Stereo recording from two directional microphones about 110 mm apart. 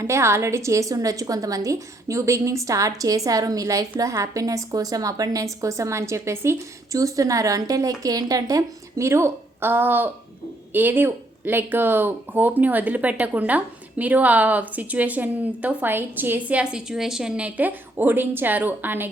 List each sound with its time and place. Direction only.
0.0 s a woman's voice: 25° right (ahead or behind)